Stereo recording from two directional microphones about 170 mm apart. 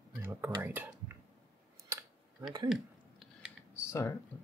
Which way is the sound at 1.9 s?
15° right (ahead or behind).